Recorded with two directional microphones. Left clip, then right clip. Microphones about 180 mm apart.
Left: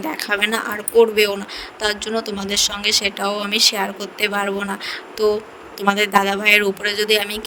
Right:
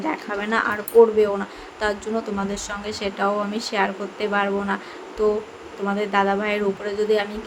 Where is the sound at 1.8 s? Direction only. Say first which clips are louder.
Left 2 dB; 55° left (ahead or behind).